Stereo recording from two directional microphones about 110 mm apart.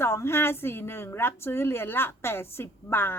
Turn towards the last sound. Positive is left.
turn(degrees=20)  # may be behind; listen again after turning